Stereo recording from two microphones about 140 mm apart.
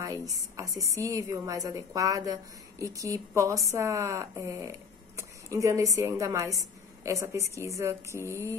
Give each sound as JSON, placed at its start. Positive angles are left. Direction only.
{"t": 0.0, "sound": "a woman's voice", "side_deg": -25}